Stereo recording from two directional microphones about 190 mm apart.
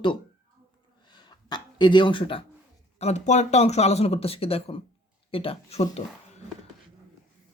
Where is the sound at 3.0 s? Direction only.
35° left (ahead or behind).